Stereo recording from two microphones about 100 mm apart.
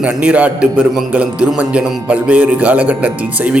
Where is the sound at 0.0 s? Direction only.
15° right (ahead or behind).